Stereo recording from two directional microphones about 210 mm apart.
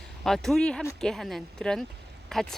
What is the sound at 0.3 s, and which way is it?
Speech, centre (ahead or behind).